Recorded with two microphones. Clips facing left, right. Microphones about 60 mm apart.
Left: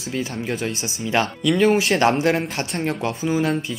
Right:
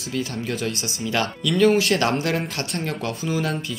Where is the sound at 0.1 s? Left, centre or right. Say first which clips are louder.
Left 1 dB; left.